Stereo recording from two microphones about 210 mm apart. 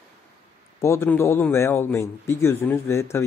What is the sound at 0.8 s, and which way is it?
Speech, 10° left (ahead or behind).